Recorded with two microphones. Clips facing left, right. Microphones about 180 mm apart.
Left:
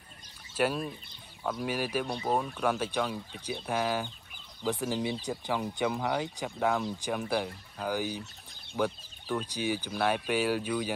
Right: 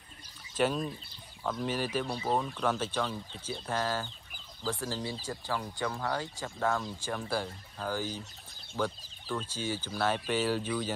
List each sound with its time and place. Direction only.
0.6 s speech: 10° left (ahead or behind)